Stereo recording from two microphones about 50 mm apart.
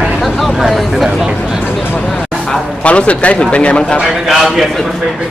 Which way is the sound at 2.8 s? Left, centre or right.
Left.